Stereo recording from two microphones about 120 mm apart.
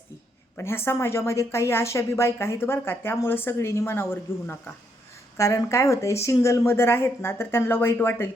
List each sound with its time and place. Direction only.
0.5 s speech: 20° left (ahead or behind)